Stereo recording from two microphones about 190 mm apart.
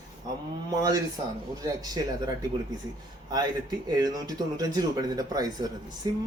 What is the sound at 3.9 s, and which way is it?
Speech, 20° right (ahead or behind).